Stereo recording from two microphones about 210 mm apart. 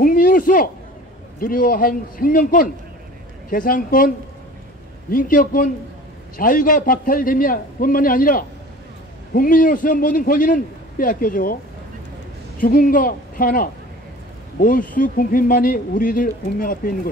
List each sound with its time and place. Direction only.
0.0 s a sound: 40° left (ahead or behind)
1.4 s speech: 40° left (ahead or behind)
5.1 s speech: 40° left (ahead or behind)
12.5 s speech: 40° left (ahead or behind)